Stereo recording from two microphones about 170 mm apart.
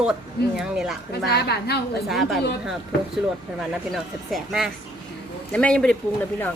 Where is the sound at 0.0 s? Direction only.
5° right (ahead or behind).